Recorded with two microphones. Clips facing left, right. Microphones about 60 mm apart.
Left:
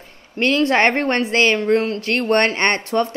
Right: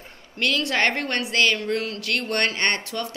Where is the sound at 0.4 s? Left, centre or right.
Left.